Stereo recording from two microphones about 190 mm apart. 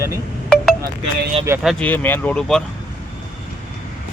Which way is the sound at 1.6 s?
10° left (ahead or behind).